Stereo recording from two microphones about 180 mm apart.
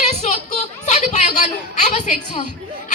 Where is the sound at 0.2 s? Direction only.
40° left (ahead or behind).